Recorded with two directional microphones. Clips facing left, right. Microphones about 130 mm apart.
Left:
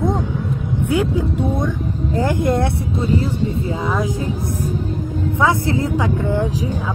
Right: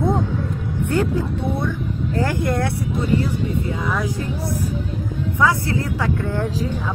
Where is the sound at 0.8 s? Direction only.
10° left (ahead or behind).